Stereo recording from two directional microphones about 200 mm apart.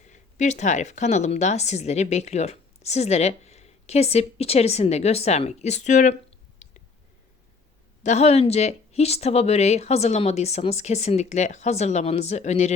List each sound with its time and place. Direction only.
0.0 s a woman's voice: 35° left (ahead or behind)
8.0 s a woman's voice: 35° left (ahead or behind)